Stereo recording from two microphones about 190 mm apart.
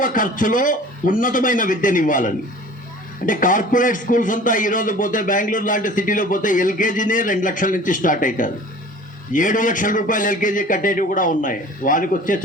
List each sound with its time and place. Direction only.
0.0 s a man's voice: 45° left (ahead or behind)